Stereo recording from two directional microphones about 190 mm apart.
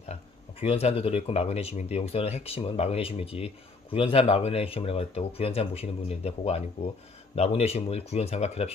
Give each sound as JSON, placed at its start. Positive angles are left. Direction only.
{"t": 0.1, "sound": "speech", "side_deg": 30}